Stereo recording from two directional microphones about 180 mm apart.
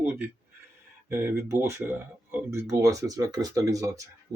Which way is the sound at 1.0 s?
15° right (ahead or behind).